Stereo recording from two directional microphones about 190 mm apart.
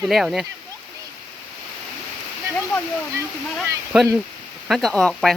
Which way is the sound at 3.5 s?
5° right (ahead or behind).